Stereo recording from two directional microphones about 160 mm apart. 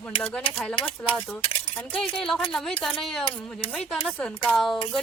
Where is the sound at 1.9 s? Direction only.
5° left (ahead or behind).